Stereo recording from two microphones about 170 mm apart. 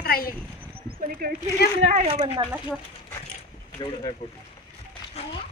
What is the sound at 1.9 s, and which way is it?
Speech, 40° right (ahead or behind).